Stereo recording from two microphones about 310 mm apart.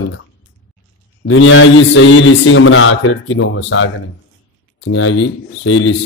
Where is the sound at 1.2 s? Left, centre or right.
Left.